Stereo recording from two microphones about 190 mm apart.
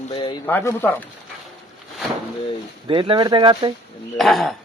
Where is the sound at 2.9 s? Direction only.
25° right (ahead or behind).